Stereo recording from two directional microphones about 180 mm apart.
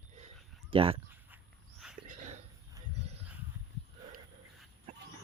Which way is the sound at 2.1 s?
40° right (ahead or behind).